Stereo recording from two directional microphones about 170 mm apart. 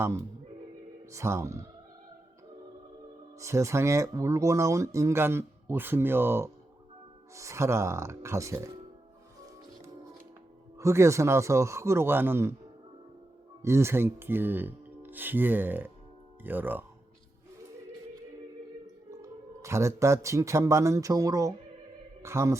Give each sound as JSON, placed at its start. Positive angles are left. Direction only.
{"t": 1.1, "sound": "speech", "side_deg": -15}
{"t": 3.3, "sound": "speech", "side_deg": -15}
{"t": 10.8, "sound": "speech", "side_deg": -15}
{"t": 13.6, "sound": "speech", "side_deg": -15}
{"t": 19.1, "sound": "a woman's voice", "side_deg": -15}